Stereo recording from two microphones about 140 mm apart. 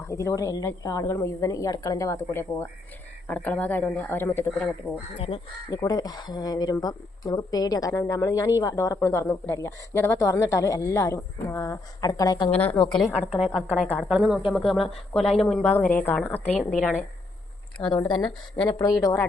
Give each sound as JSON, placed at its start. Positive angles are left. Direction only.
{"t": 0.0, "sound": "speech", "side_deg": 20}
{"t": 5.1, "sound": "speech", "side_deg": 40}
{"t": 5.7, "sound": "a woman's voice", "side_deg": 25}
{"t": 13.4, "sound": "speech", "side_deg": 0}
{"t": 14.1, "sound": "speech", "side_deg": 0}
{"t": 16.6, "sound": "speech", "side_deg": 0}
{"t": 17.7, "sound": "a woman's voice", "side_deg": 35}